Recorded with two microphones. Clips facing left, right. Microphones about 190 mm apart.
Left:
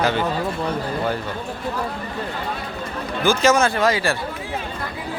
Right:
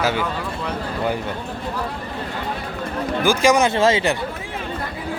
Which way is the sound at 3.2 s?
15° right (ahead or behind).